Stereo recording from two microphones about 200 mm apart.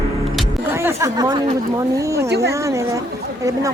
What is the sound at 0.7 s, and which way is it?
A woman's voice, 15° right (ahead or behind).